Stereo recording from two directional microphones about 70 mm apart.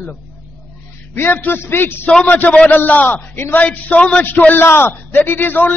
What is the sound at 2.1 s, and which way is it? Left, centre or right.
A man's voice, left.